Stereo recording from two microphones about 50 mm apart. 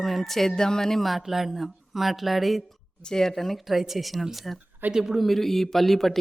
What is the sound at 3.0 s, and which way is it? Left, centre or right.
Speech, centre.